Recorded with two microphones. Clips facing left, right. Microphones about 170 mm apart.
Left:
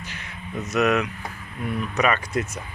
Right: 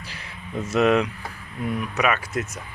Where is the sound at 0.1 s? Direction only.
30° right (ahead or behind).